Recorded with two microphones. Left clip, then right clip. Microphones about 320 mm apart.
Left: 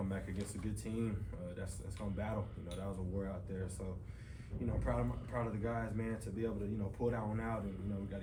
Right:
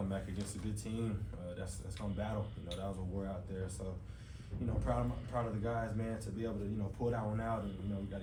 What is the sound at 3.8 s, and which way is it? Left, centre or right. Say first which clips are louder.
Speech: right 1 dB; centre.